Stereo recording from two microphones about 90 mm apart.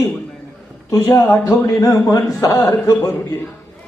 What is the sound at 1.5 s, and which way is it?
Speech, 40° left (ahead or behind).